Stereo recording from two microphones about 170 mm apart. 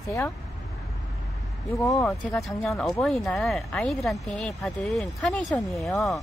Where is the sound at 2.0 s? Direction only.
Centre (ahead or behind).